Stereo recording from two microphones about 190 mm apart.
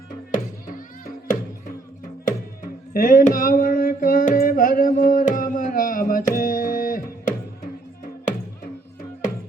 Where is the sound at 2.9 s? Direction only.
50° left (ahead or behind).